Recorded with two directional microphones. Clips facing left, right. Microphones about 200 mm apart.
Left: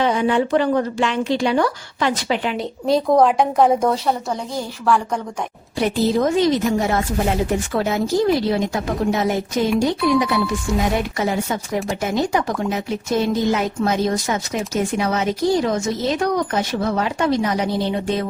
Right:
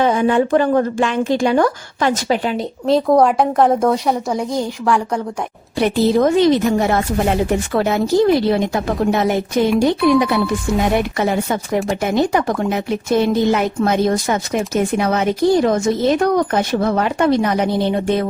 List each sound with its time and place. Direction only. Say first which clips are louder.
0.0 s a woman's voice: right 3 dB; 45° right (ahead or behind)
2.8 s a woman's voice: right 2 dB; 5° right (ahead or behind)
5.8 s speech: right 4 dB; 60° right (ahead or behind)